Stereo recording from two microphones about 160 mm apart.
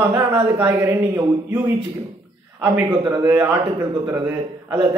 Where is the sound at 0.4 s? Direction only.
20° right (ahead or behind).